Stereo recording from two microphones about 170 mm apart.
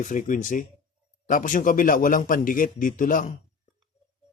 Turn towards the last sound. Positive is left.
turn(degrees=50)  # may be behind; listen again after turning